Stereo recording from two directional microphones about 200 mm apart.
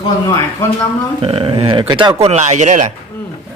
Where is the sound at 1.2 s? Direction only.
30° right (ahead or behind).